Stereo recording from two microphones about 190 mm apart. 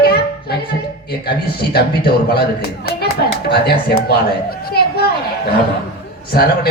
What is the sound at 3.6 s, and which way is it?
Speech, 55° left (ahead or behind).